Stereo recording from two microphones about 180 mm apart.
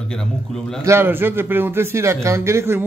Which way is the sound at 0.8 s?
10° right (ahead or behind).